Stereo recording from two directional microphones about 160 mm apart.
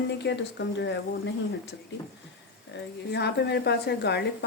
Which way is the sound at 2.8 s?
90° left.